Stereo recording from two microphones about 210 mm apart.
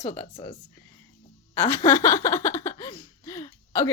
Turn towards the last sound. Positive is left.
turn(degrees=15)  # may be behind; listen again after turning